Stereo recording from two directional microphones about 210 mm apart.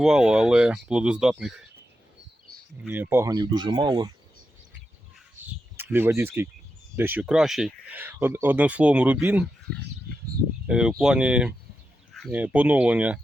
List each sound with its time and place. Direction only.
0.0 s speech: 5° right (ahead or behind)
2.8 s speech: 10° right (ahead or behind)
5.7 s speech: 10° right (ahead or behind)
10.7 s speech: 5° right (ahead or behind)